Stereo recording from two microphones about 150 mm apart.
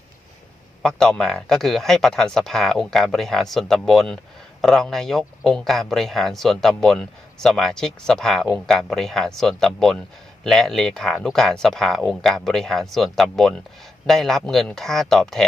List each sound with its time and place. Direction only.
0.8 s speech: 5° left (ahead or behind)